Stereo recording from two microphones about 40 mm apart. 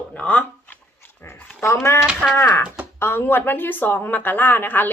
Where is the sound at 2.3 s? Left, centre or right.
Left.